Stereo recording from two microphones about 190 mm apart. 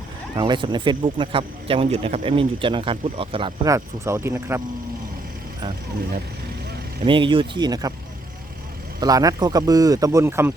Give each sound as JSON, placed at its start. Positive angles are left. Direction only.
{"t": 0.3, "sound": "speech", "side_deg": -25}
{"t": 7.0, "sound": "speech", "side_deg": -25}
{"t": 9.0, "sound": "speech", "side_deg": -20}